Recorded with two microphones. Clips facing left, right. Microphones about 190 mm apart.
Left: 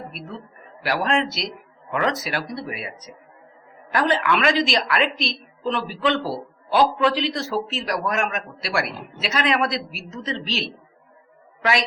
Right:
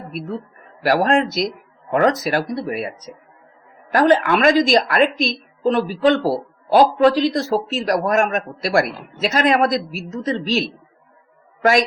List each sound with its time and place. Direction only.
0.9 s a woman's voice: 45° right (ahead or behind)
3.9 s a woman's voice: 45° right (ahead or behind)